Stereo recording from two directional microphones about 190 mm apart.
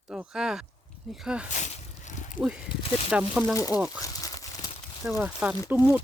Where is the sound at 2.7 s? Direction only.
30° left (ahead or behind).